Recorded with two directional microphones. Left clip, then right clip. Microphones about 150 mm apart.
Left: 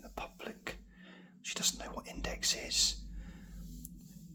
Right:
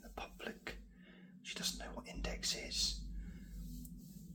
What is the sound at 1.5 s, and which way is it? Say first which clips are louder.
Whispering: left 6 dB; 40° left (ahead or behind).